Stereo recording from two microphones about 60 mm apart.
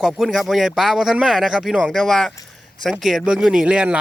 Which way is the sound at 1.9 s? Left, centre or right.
Centre.